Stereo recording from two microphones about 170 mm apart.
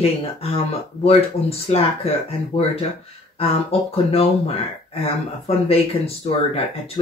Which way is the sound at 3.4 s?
35° left (ahead or behind).